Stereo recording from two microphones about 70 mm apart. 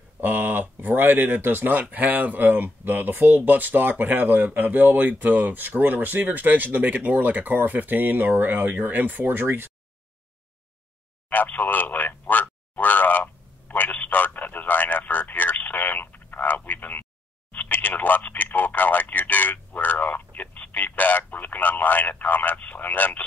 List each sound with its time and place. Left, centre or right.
0.2 s speech: right
11.2 s a sound: left
17.5 s speech: left